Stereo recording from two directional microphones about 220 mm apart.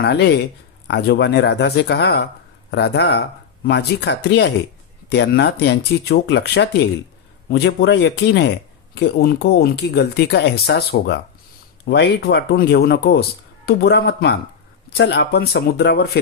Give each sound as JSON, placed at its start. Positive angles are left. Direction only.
{"t": 0.0, "sound": "speech", "side_deg": 50}